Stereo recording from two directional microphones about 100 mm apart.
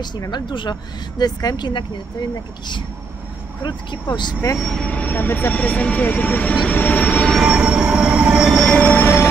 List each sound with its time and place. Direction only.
0.0 s speech: 45° left (ahead or behind)
3.6 s speech: 50° left (ahead or behind)
4.6 s speech: 5° left (ahead or behind)
7.3 s train: 5° right (ahead or behind)
8.5 s train: 5° left (ahead or behind)
8.8 s train: 20° left (ahead or behind)